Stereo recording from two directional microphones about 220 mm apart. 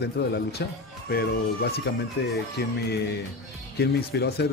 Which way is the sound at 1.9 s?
50° left (ahead or behind).